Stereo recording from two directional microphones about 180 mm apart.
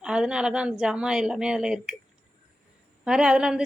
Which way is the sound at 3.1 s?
5° right (ahead or behind).